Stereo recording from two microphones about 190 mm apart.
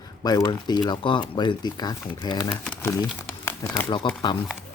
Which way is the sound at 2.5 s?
5° left (ahead or behind).